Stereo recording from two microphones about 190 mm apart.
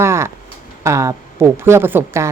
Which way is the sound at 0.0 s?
15° right (ahead or behind).